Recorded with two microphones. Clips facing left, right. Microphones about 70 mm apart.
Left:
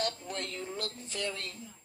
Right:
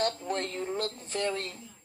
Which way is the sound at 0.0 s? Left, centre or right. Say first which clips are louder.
Right 5 dB; right.